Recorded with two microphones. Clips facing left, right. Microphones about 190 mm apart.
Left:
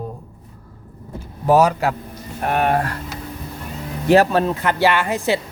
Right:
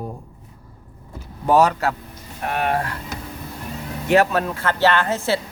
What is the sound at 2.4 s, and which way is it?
Speech, 45° left (ahead or behind).